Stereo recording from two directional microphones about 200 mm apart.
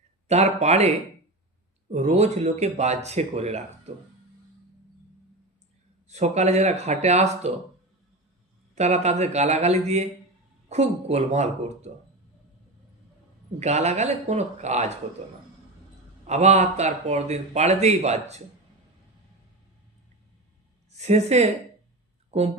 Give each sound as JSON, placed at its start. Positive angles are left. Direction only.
{"t": 0.3, "sound": "speech", "side_deg": -35}
{"t": 1.9, "sound": "speech", "side_deg": -35}
{"t": 6.1, "sound": "speech", "side_deg": -35}
{"t": 8.7, "sound": "speech", "side_deg": -35}
{"t": 13.6, "sound": "speech", "side_deg": -35}
{"t": 16.2, "sound": "speech", "side_deg": -35}
{"t": 20.9, "sound": "a woman's voice", "side_deg": -35}